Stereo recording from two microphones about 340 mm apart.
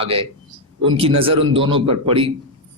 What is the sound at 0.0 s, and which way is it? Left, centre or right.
A man's voice, centre.